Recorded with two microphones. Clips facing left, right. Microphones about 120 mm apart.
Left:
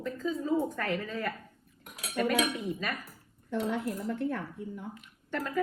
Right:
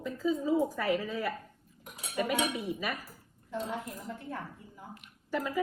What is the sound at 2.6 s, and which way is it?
Speech, 10° right (ahead or behind).